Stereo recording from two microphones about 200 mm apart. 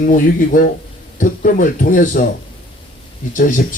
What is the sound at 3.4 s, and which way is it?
Speech, 40° left (ahead or behind).